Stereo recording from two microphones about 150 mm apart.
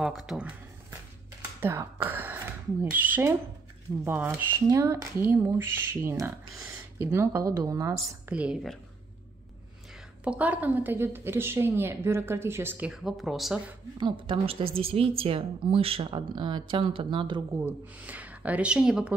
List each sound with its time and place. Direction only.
0.0 s speech: centre (ahead or behind)
1.6 s a woman's voice: 15° right (ahead or behind)
8.3 s a woman's voice: 5° right (ahead or behind)
10.2 s a woman's voice: 10° right (ahead or behind)
13.9 s a woman's voice: 30° right (ahead or behind)
17.6 s a woman's voice: 15° right (ahead or behind)